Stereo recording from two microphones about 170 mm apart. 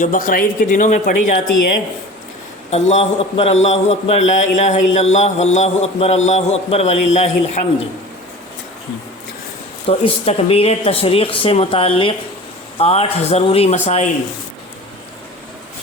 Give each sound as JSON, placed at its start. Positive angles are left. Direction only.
{"t": 0.0, "sound": "speech", "side_deg": 50}
{"t": 2.6, "sound": "a man's voice", "side_deg": 40}
{"t": 9.8, "sound": "a man's voice", "side_deg": 35}